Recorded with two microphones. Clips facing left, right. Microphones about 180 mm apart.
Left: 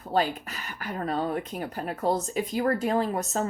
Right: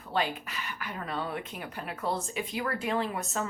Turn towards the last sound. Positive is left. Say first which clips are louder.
# left 5 dB
turn(degrees=40)  # may be behind; listen again after turning